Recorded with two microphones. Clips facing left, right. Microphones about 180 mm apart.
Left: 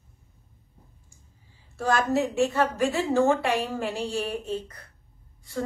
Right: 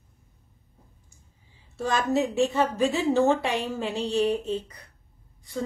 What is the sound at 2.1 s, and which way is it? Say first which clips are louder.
A woman's voice: even; 20° right (ahead or behind).